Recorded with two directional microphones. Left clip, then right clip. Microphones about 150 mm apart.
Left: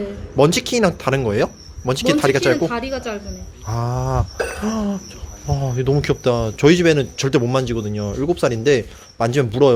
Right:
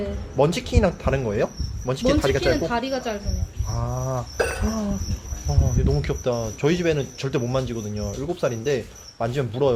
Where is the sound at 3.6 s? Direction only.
85° left.